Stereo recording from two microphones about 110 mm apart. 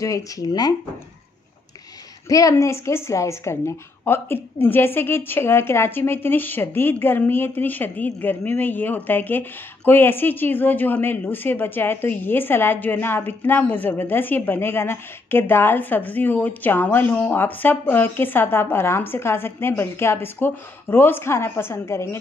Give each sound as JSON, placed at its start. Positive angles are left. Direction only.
{"t": 0.0, "sound": "speech", "side_deg": 30}
{"t": 2.2, "sound": "a woman's voice", "side_deg": 30}